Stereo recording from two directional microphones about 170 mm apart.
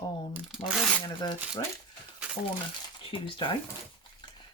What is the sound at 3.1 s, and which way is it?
Speech, 30° left (ahead or behind).